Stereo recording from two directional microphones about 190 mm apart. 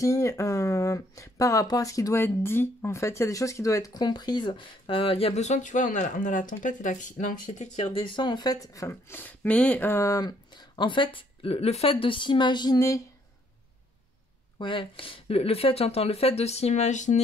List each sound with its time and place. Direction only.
0.0 s speech: 15° left (ahead or behind)
14.6 s speech: 25° left (ahead or behind)